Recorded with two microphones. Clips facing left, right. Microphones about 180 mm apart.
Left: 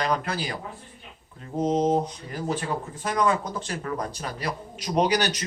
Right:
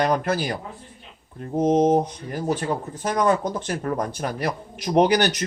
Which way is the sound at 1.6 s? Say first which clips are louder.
Right 4 dB; 50° right (ahead or behind).